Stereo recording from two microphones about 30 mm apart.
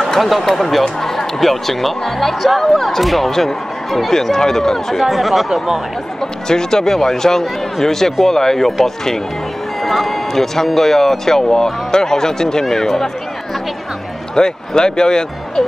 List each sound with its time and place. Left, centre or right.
0.0 s speech: centre
3.3 s speech: centre
5.0 s speech: centre
6.4 s speech: centre
9.8 s speech: centre
14.3 s speech: left